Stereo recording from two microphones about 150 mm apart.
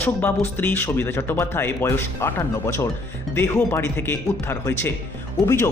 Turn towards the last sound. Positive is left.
turn(degrees=15)  # may be behind; listen again after turning